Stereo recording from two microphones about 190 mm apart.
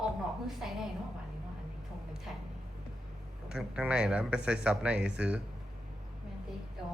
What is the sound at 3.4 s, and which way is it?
Speech, 5° right (ahead or behind).